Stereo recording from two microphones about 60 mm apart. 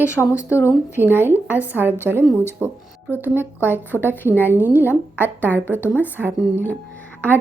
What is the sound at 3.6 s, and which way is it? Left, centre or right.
Speech, left.